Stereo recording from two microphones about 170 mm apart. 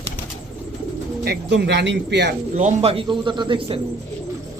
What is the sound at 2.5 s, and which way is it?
A man's voice, 40° right (ahead or behind).